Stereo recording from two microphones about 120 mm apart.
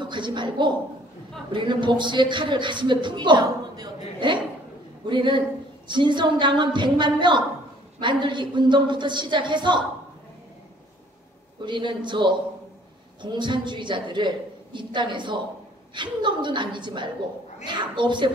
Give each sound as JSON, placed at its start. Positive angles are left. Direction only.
{"t": 0.0, "sound": "a woman's voice", "side_deg": -40}
{"t": 11.6, "sound": "a woman's voice", "side_deg": -40}